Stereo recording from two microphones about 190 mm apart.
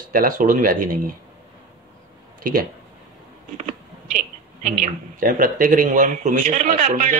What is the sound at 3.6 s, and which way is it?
Creak, 40° right (ahead or behind).